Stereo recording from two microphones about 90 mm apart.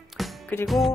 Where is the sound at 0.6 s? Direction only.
Centre (ahead or behind).